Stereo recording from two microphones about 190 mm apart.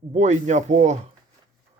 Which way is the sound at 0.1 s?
40° right (ahead or behind).